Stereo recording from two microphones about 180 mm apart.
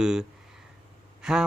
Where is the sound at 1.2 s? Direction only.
5° right (ahead or behind).